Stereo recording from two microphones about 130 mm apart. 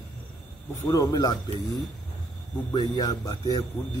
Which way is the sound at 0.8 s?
30° left (ahead or behind).